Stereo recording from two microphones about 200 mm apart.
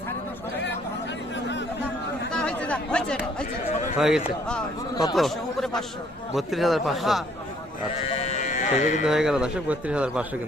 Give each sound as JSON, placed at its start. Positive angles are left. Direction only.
{"t": 2.3, "sound": "chatter", "side_deg": 5}
{"t": 3.9, "sound": "speech", "side_deg": 0}
{"t": 8.1, "sound": "sheep", "side_deg": 30}
{"t": 9.0, "sound": "speech", "side_deg": -5}